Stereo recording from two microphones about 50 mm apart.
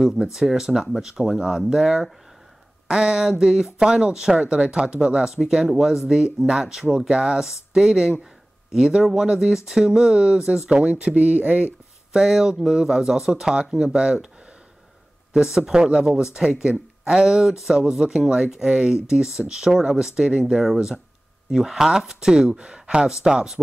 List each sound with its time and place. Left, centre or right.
0.0 s speech: centre; by 11.6 s right
12.1 s speech: centre
15.3 s speech: centre